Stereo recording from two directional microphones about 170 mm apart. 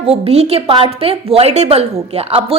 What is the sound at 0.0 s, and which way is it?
A woman's voice, 35° right (ahead or behind).